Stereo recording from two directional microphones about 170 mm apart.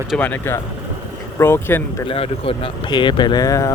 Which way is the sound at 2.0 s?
35° left (ahead or behind).